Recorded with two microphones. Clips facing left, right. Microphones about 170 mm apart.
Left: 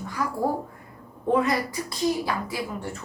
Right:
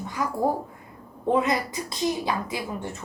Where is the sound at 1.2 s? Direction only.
20° right (ahead or behind).